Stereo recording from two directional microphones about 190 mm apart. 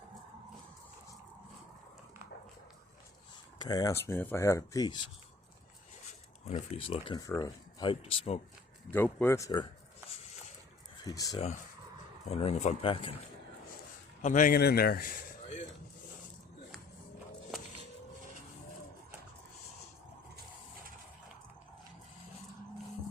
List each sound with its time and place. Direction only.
3.6 s speech: 20° left (ahead or behind)
6.1 s a sound: 35° left (ahead or behind)
6.9 s speech: 20° left (ahead or behind)
8.9 s speech: 10° left (ahead or behind)
11.0 s speech: 20° left (ahead or behind)
12.3 s speech: 35° left (ahead or behind)
14.2 s speech: 40° left (ahead or behind)